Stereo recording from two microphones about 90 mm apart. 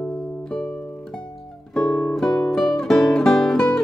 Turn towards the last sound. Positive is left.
turn(degrees=5)  # may be behind; listen again after turning